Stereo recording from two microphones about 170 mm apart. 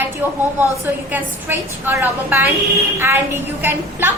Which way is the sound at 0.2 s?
10° right (ahead or behind).